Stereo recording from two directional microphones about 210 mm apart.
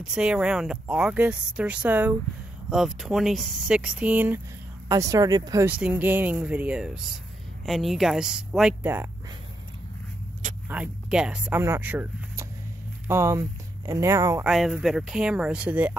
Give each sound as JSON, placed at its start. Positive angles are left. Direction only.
{"t": 0.0, "sound": "speech", "side_deg": -5}
{"t": 10.7, "sound": "speech", "side_deg": -5}
{"t": 14.4, "sound": "speech", "side_deg": 0}